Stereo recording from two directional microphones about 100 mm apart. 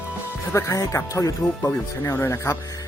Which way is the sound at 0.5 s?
35° left (ahead or behind).